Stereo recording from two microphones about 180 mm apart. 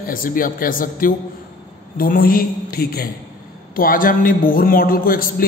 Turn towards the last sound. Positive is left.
turn(degrees=55)  # may be behind; listen again after turning